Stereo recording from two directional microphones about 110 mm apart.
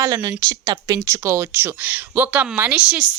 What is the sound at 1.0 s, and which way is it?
Speech, 25° right (ahead or behind).